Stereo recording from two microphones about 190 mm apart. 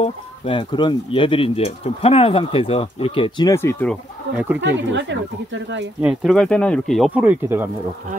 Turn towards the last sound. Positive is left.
turn(degrees=-10)  # may be behind; listen again after turning